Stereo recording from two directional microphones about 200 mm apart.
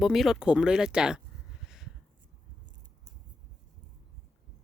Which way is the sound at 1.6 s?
Centre (ahead or behind).